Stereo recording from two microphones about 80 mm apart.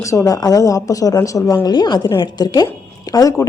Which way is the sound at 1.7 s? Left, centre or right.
Left.